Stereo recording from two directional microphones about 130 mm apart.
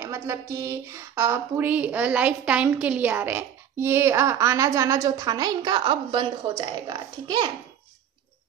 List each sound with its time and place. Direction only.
0.0 s speech: 20° right (ahead or behind)